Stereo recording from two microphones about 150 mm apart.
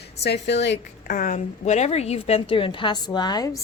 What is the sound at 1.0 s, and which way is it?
A woman's voice, 70° left (ahead or behind).